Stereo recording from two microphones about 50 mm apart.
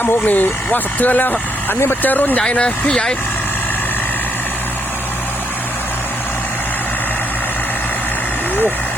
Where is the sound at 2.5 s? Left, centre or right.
Left.